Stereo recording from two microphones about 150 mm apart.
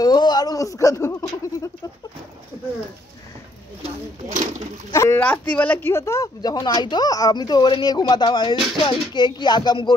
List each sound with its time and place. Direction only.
0.0 s speech: 30° left (ahead or behind)
4.9 s speech: 20° left (ahead or behind)
5.2 s speech: 10° left (ahead or behind); by 9.9 s 30° left (ahead or behind)